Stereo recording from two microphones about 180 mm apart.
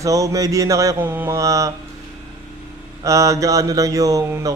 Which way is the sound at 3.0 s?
15° right (ahead or behind).